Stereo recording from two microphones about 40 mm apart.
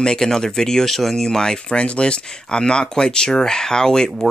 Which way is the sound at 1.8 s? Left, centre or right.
Left.